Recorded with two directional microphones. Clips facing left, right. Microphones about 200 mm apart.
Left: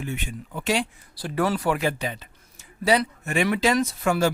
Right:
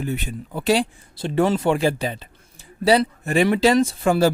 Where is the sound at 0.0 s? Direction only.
40° right (ahead or behind).